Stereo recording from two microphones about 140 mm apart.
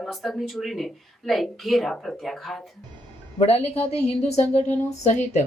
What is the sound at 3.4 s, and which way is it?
A woman's voice, 45° left (ahead or behind).